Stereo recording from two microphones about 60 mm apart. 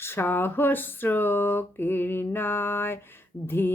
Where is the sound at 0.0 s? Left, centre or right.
Left.